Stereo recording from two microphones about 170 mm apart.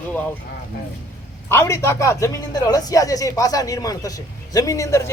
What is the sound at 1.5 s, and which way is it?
Speech, 15° left (ahead or behind).